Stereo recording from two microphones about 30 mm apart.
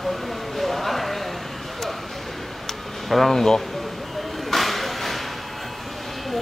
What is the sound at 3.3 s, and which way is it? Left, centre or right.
Speech, centre.